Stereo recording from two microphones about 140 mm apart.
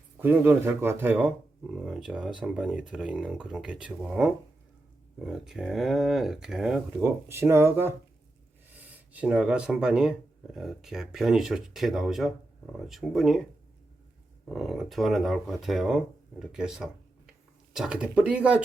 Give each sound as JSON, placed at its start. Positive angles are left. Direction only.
{"t": 0.2, "sound": "speech", "side_deg": -15}
{"t": 7.0, "sound": "speech", "side_deg": -20}
{"t": 14.5, "sound": "speech", "side_deg": 0}